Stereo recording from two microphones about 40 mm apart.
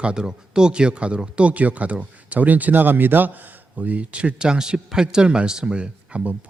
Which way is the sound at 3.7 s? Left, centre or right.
Right.